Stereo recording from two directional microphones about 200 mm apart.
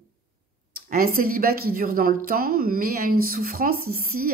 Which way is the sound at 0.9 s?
45° right (ahead or behind).